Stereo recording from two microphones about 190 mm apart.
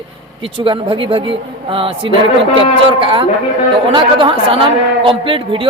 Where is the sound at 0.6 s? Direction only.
25° right (ahead or behind).